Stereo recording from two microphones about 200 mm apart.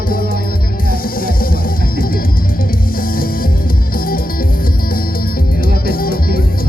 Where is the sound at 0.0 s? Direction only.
45° left (ahead or behind).